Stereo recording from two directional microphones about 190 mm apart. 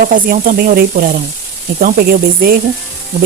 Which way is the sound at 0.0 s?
45° right (ahead or behind).